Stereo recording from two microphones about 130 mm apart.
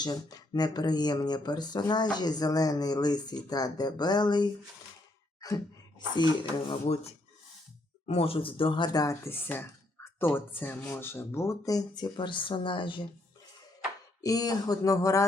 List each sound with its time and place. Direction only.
0.0 s speech: 30° left (ahead or behind)
6.7 s speech: 50° left (ahead or behind)
14.2 s speech: 30° left (ahead or behind)